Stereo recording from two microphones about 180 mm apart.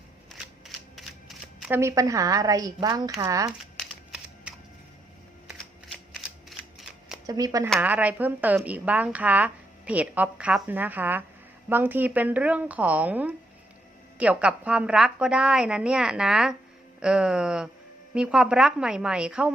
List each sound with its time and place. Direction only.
0.3 s shuffling cards: centre (ahead or behind)
1.7 s a woman's voice: 15° right (ahead or behind)
3.8 s a sound: 5° right (ahead or behind)
6.1 s a sound: centre (ahead or behind)
7.3 s a woman's voice: 20° right (ahead or behind)
7.8 s a woman's voice: 10° right (ahead or behind)